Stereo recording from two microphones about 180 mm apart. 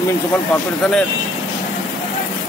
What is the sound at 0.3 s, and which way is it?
Speech, 5° left (ahead or behind).